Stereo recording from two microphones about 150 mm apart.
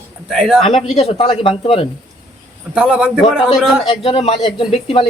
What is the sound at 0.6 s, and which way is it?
Speech, 40° left (ahead or behind).